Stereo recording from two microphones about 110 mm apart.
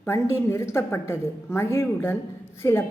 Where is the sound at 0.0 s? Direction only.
25° left (ahead or behind).